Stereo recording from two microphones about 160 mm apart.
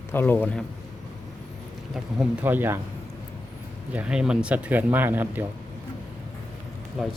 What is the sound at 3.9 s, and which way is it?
Speech, 5° right (ahead or behind).